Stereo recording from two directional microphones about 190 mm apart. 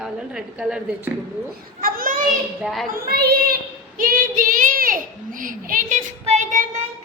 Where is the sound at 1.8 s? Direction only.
50° right (ahead or behind).